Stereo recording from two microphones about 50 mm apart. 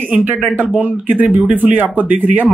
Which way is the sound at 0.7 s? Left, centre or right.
Right.